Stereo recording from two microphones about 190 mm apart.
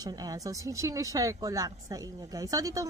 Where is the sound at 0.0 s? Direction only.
20° right (ahead or behind).